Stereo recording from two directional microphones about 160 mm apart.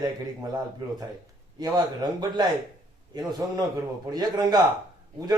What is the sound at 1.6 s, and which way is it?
Speech, 25° right (ahead or behind).